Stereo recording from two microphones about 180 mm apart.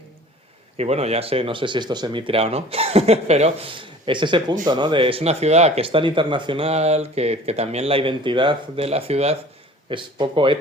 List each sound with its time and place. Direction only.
0.8 s speech: 35° right (ahead or behind)